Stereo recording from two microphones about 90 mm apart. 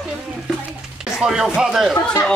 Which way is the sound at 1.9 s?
40° left (ahead or behind).